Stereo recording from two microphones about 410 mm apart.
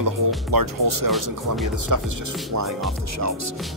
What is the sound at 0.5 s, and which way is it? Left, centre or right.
Speech, right.